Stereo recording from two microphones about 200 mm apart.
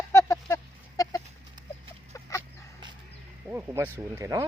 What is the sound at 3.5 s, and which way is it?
Speech, 10° right (ahead or behind).